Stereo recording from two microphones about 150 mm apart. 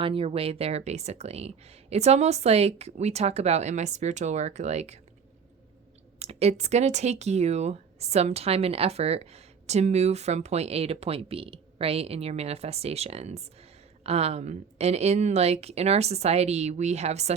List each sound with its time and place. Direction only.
0.0 s speech: 40° right (ahead or behind)
6.1 s speech: 45° right (ahead or behind)